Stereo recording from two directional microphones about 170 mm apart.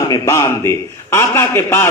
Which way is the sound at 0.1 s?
20° left (ahead or behind).